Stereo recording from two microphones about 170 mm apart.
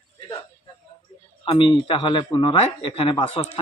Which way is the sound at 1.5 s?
30° left (ahead or behind).